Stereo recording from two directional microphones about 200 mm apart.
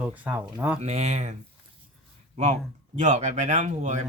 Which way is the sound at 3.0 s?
35° right (ahead or behind).